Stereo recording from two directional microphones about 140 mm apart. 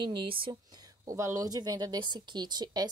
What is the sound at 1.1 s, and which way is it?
Speech, 25° right (ahead or behind).